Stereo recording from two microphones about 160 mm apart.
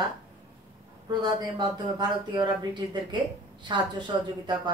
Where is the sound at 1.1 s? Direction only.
25° right (ahead or behind).